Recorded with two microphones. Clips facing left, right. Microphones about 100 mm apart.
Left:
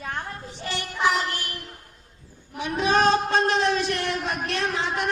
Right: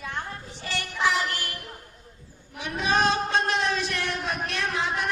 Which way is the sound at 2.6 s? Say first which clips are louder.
Left 3 dB; 35° left (ahead or behind).